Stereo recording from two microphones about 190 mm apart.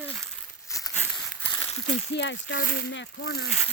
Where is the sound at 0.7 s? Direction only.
15° left (ahead or behind).